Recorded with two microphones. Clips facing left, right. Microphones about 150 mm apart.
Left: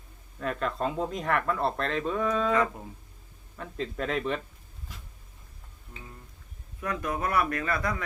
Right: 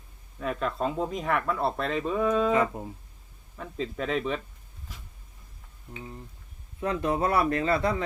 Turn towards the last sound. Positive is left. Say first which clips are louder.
# right 5 dB
turn(degrees=-25)  # may be behind; listen again after turning